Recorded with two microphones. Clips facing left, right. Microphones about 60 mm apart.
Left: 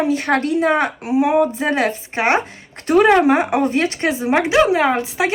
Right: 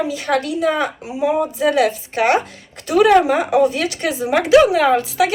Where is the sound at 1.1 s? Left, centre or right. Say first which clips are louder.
Left 4 dB; left.